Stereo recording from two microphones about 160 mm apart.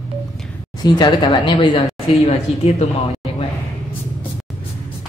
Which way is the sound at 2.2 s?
40° left (ahead or behind).